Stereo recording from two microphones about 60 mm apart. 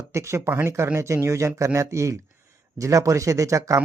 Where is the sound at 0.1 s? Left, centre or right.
Right.